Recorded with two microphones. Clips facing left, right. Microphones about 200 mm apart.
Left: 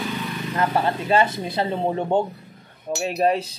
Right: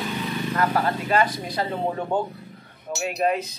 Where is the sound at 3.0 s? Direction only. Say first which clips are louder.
Left 3 dB; 30° left (ahead or behind).